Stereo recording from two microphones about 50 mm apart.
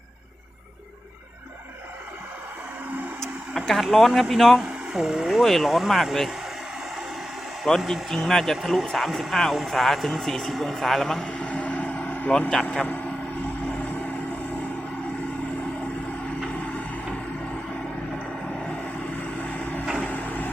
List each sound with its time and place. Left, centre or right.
3.5 s speech: centre
5.3 s speech: centre
7.6 s speech: centre
11.3 s vehicle: left
19.2 s vehicle: left
20.1 s a sound: left